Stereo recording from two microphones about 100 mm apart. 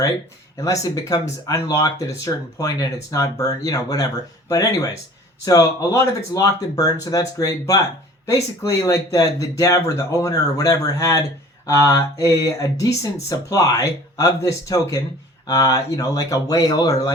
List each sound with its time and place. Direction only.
0.5 s speech: 35° left (ahead or behind)